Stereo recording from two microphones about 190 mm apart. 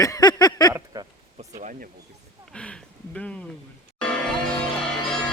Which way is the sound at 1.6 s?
40° right (ahead or behind).